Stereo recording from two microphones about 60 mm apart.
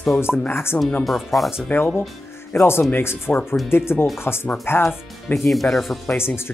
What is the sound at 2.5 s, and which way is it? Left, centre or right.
Speech, left.